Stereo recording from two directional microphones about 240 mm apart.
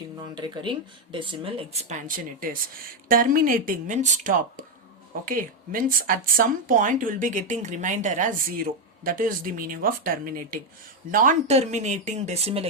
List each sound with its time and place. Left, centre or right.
0.2 s speech: centre